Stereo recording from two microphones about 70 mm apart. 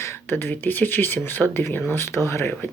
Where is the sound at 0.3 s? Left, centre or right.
Left.